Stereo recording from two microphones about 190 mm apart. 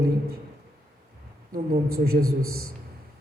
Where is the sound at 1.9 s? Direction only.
50° right (ahead or behind).